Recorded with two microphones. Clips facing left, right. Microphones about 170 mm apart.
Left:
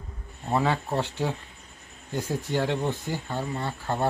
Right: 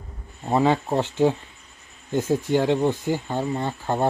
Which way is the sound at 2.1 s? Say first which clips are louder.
Right 7 dB; 20° right (ahead or behind).